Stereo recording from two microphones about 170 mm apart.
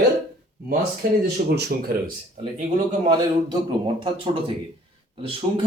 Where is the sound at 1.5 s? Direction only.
80° right.